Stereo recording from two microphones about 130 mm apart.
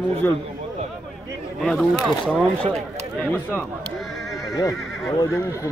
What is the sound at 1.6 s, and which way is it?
Speech, centre (ahead or behind).